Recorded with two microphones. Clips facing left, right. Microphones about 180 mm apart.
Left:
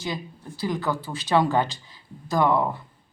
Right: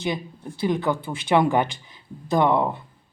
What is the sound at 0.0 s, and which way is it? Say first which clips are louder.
Speech: right 4 dB; 20° right (ahead or behind).